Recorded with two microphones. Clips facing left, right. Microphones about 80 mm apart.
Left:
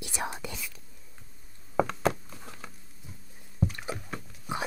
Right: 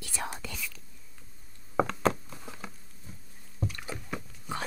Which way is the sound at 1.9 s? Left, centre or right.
Centre.